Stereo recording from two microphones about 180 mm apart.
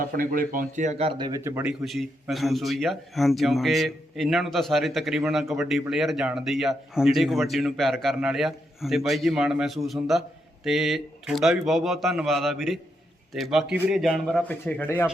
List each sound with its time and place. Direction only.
0.2 s a man's voice: 50° right (ahead or behind); by 1.3 s 35° right (ahead or behind)
1.3 s speech: 15° right (ahead or behind)
1.8 s a man's voice: centre (ahead or behind)